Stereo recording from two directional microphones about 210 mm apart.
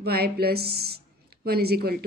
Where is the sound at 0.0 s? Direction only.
50° right (ahead or behind).